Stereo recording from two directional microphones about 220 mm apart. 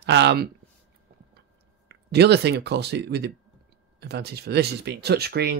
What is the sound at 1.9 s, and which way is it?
Speech, 50° right (ahead or behind).